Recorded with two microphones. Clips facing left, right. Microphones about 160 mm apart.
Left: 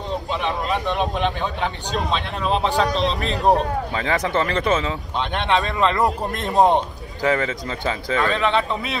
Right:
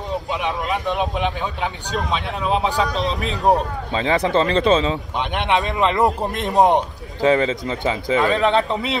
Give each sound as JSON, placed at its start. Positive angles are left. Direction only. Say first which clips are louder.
{"t": 0.3, "sound": "speech", "louder": "left 1 dB", "side_deg": -10}
{"t": 3.9, "sound": "a man's voice", "louder": "right 6 dB", "side_deg": -20}
{"t": 8.4, "sound": "speech", "louder": "right 3 dB", "side_deg": -40}